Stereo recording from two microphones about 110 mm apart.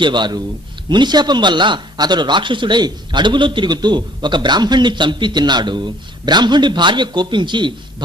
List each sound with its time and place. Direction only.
0.0 s speech: 45° right (ahead or behind)